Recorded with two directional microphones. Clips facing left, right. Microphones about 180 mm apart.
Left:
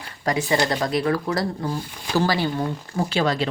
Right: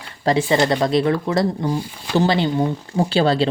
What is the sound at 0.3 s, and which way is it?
A woman's voice, 30° right (ahead or behind).